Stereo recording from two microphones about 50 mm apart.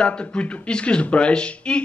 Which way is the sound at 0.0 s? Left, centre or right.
Centre.